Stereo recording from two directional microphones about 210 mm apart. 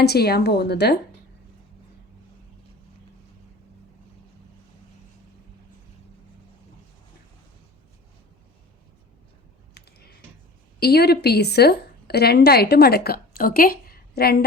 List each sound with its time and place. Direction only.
0.0 s a woman's voice: 50° left (ahead or behind)
9.8 s typing: 50° left (ahead or behind)
10.8 s a woman's voice: 50° left (ahead or behind)